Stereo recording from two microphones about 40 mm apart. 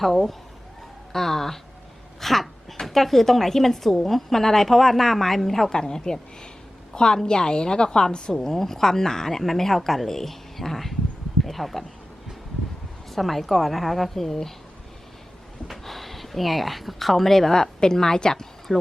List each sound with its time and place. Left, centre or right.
0.0 s a woman's voice: centre
2.2 s a sound: centre
2.8 s a woman's voice: centre
5.7 s a woman's voice: centre
13.1 s a woman's voice: centre
15.6 s speech: centre
18.7 s a woman's voice: centre